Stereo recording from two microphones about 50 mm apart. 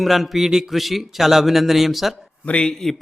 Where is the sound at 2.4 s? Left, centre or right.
Left.